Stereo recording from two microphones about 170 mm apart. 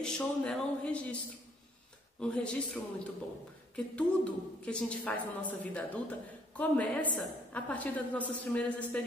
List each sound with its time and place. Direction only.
0.0 s speech: 5° left (ahead or behind)
2.1 s a woman's voice: 5° left (ahead or behind)